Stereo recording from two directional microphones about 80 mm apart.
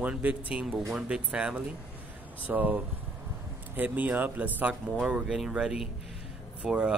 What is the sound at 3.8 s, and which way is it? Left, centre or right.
Speech, right.